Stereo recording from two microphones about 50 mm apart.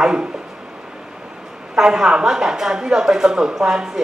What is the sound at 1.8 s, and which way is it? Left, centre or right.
Speech, centre.